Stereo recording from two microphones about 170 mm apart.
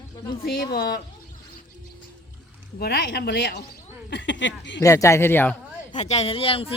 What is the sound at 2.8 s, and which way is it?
Speech, 70° left (ahead or behind).